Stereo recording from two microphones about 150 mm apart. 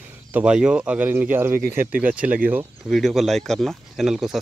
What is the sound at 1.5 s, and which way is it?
Speech, 70° right (ahead or behind).